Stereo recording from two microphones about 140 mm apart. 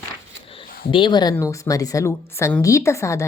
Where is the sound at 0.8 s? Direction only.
35° left (ahead or behind).